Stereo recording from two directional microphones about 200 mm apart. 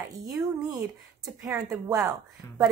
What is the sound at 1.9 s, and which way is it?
Speech, 15° right (ahead or behind).